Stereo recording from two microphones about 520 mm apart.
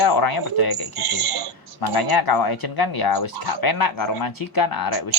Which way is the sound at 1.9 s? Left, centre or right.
Left.